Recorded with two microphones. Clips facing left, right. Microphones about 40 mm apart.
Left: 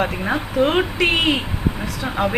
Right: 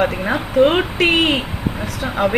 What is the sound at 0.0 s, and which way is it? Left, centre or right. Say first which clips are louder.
Speech: right 3 dB; centre.